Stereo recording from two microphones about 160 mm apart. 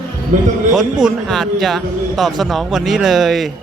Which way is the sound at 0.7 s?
5° right (ahead or behind).